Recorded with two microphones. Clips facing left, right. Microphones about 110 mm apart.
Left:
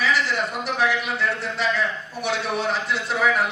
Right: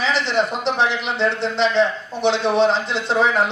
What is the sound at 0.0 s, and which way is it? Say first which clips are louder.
Speech: right 3 dB; 25° right (ahead or behind).